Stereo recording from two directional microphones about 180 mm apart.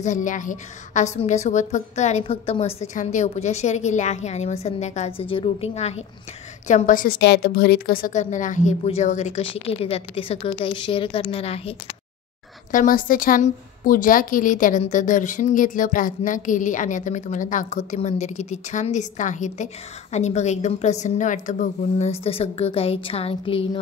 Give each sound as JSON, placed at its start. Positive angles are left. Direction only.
{"t": 0.0, "sound": "a woman's voice", "side_deg": 45}
{"t": 6.7, "sound": "a woman's voice", "side_deg": 50}
{"t": 7.2, "sound": "a woman's voice", "side_deg": 65}
{"t": 12.7, "sound": "a woman's voice", "side_deg": 50}